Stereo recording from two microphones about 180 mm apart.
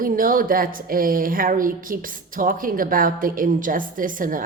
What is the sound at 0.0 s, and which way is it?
A woman's voice, 50° right (ahead or behind).